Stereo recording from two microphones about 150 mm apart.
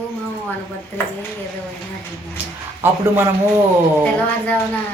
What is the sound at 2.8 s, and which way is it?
Speech, 15° right (ahead or behind).